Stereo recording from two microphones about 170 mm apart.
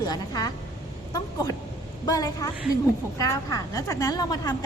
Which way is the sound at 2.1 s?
20° left (ahead or behind).